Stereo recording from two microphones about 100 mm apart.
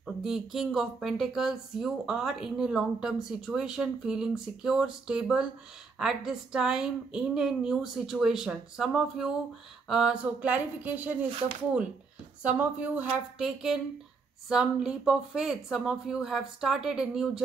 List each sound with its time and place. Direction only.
0.0 s a woman's voice: 5° right (ahead or behind)
12.4 s a woman's voice: 15° right (ahead or behind)